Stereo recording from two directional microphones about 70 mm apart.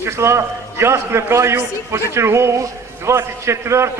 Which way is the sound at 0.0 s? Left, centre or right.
Right.